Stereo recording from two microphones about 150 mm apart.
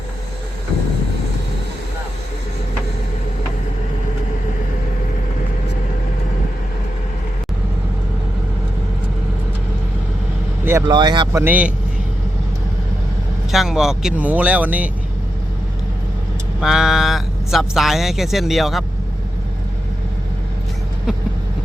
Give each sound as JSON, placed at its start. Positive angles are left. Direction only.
{"t": 10.7, "sound": "speech", "side_deg": -20}
{"t": 10.9, "sound": "speech", "side_deg": -30}
{"t": 11.3, "sound": "speech", "side_deg": -15}
{"t": 13.5, "sound": "speech", "side_deg": -5}
{"t": 16.6, "sound": "speech", "side_deg": 0}